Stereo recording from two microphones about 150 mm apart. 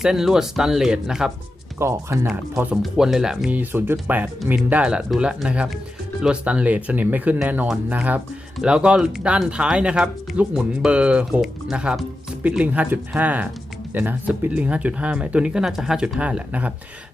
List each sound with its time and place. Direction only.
0.0 s speech: 5° right (ahead or behind)
1.8 s speech: 20° right (ahead or behind)
2.8 s speech: 5° right (ahead or behind)